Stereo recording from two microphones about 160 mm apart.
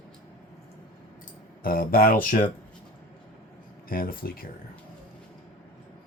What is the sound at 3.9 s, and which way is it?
Speech, 65° left (ahead or behind).